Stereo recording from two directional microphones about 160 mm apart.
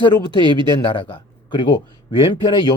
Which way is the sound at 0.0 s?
30° left (ahead or behind).